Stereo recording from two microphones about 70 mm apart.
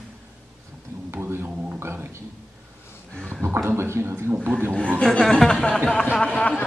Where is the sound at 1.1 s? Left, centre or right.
Right.